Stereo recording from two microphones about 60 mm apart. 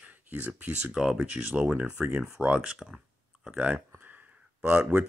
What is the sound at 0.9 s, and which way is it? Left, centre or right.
Speech, centre.